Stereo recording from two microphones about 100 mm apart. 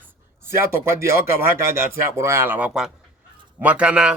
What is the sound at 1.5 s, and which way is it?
Speech, 25° right (ahead or behind).